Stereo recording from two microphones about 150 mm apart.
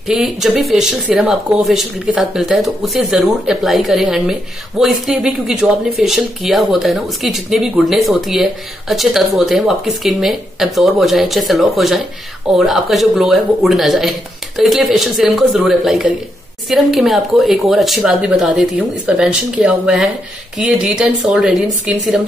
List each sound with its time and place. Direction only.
0.1 s speech: 5° right (ahead or behind)